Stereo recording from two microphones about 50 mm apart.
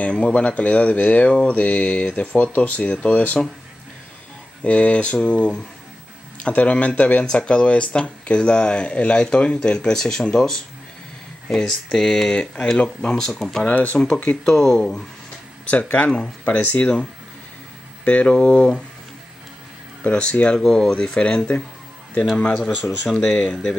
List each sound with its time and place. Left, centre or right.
0.0 s speech: left
4.6 s speech: left; by 13.7 s centre
13.7 s speech: left
13.9 s speech: centre
14.4 s speech: centre
15.7 s speech: left
16.8 s speech: centre
20.0 s speech: left
20.5 s speech: centre
20.9 s speech: left
22.6 s speech: centre
23.2 s speech: left